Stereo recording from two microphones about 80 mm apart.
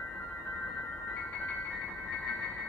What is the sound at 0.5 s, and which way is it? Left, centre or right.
Music, centre.